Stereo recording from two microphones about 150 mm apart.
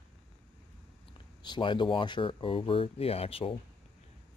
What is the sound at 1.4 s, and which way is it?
Speech, 30° left (ahead or behind).